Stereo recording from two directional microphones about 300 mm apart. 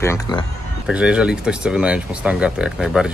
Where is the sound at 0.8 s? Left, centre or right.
Centre.